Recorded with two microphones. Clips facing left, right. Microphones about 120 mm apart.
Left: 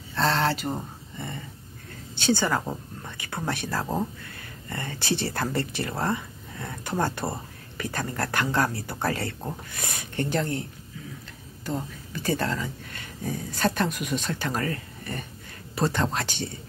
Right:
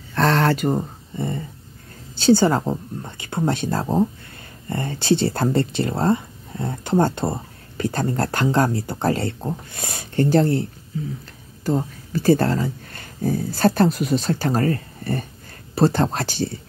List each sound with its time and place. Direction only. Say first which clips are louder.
0.1 s a sound: right 6 dB; 55° right (ahead or behind); by 1.4 s 35° right (ahead or behind)
2.1 s speech: right 8 dB; 30° right (ahead or behind)
11.6 s speech: right 9 dB; 40° right (ahead or behind)